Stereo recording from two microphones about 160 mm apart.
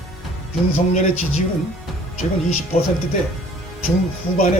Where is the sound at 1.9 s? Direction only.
Centre (ahead or behind).